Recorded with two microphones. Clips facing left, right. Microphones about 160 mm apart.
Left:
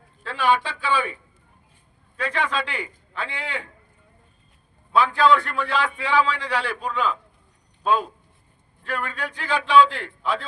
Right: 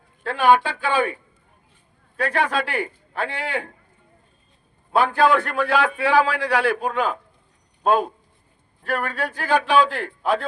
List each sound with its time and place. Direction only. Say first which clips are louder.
0.2 s a man's voice: right 5 dB; 55° right (ahead or behind)
2.1 s a man's voice: right 3 dB; 50° right (ahead or behind)
4.9 s a man's voice: right 1 dB; 50° right (ahead or behind)